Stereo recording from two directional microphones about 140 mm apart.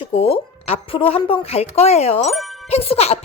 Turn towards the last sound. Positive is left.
turn(degrees=45)  # may be behind; listen again after turning